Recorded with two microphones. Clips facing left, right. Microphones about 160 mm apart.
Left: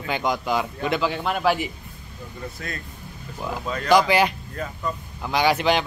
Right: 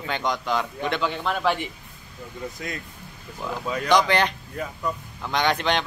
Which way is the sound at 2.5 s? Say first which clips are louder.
Right 1 dB; 15° right (ahead or behind).